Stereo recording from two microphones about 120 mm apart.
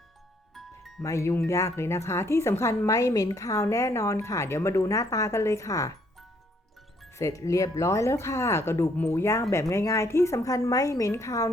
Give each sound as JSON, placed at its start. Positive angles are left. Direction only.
{"t": 0.5, "sound": "music", "side_deg": 0}
{"t": 1.0, "sound": "a woman's voice", "side_deg": 25}
{"t": 7.2, "sound": "a woman's voice", "side_deg": 25}